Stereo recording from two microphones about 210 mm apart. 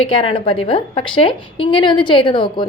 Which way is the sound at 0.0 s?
25° left (ahead or behind).